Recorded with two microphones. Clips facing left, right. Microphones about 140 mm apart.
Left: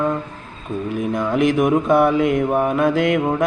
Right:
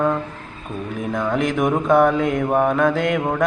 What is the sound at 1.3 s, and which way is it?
Speech, centre (ahead or behind).